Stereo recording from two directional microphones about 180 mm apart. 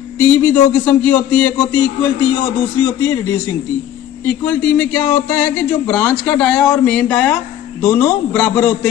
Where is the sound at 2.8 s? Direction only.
15° left (ahead or behind).